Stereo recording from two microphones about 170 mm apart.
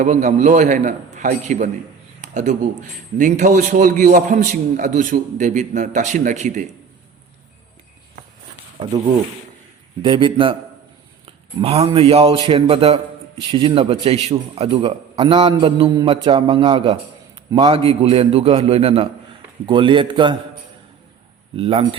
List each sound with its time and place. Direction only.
0.0 s a man's voice: 45° right (ahead or behind)
10.0 s a man's voice: 30° right (ahead or behind)
11.6 s a man's voice: 35° right (ahead or behind)
21.5 s a man's voice: 35° right (ahead or behind)